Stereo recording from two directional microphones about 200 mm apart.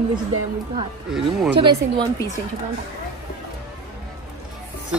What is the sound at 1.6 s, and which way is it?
Speech, 25° right (ahead or behind).